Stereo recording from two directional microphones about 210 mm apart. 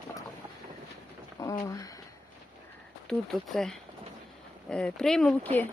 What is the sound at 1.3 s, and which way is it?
Speech, 15° left (ahead or behind).